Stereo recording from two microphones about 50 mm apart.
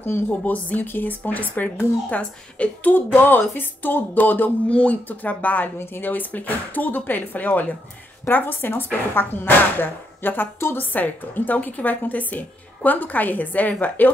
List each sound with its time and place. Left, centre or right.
0.0 s a woman's voice: left
3.1 s a woman's voice: left
4.6 s a woman's voice: left